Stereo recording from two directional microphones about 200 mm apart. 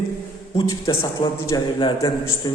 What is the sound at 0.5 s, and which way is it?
A man's voice, 25° left (ahead or behind).